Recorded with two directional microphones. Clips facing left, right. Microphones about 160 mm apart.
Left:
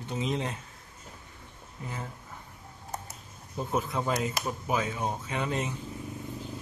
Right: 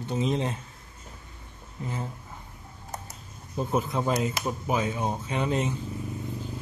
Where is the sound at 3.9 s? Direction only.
20° right (ahead or behind).